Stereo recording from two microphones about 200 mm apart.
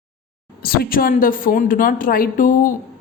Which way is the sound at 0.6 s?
50° left (ahead or behind).